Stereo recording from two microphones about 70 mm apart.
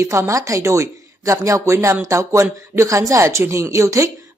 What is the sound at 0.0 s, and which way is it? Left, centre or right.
A man's voice, right.